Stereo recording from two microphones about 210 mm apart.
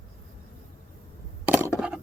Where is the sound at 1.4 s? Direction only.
10° right (ahead or behind).